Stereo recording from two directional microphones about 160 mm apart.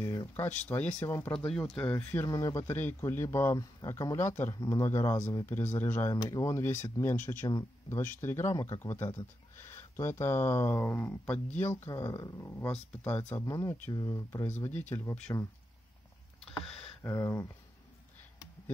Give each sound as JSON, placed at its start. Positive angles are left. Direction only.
{"t": 0.0, "sound": "speech", "side_deg": 20}
{"t": 16.4, "sound": "computer keyboard", "side_deg": 5}
{"t": 17.0, "sound": "speech", "side_deg": 20}